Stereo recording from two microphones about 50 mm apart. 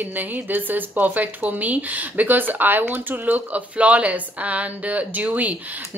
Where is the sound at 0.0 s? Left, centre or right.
Right.